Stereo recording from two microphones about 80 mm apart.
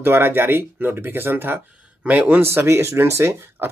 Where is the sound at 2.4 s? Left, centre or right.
Right.